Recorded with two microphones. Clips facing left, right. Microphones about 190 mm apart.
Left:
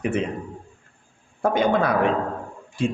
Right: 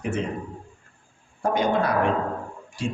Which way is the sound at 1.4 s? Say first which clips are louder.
Left 2 dB; 55° left (ahead or behind).